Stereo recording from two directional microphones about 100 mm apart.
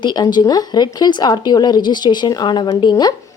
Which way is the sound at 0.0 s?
45° left (ahead or behind).